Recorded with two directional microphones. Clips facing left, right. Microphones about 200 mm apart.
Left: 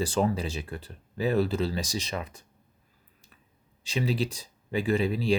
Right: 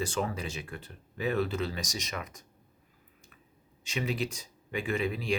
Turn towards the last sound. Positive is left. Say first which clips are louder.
# left 5 dB
turn(degrees=35)  # may be behind; listen again after turning